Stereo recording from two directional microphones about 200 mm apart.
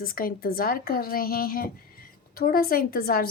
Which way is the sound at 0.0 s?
45° left (ahead or behind).